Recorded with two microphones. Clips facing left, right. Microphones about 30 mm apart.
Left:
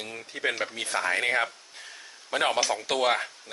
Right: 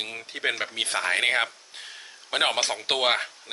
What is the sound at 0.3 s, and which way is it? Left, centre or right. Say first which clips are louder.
Speech: right 2 dB; right.